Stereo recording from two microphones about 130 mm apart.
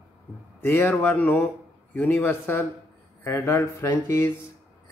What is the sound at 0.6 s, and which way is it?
A man's voice, 15° left (ahead or behind).